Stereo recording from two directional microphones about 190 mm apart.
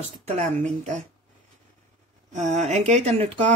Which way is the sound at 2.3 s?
35° right (ahead or behind).